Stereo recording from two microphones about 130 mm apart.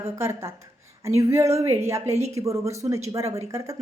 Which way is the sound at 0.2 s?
20° right (ahead or behind).